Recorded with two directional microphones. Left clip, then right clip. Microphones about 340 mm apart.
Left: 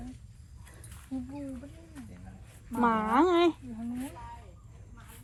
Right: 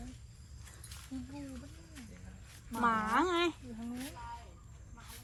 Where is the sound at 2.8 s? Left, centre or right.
Centre.